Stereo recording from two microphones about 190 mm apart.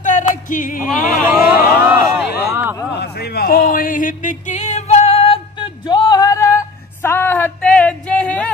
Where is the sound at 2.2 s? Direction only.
55° left (ahead or behind).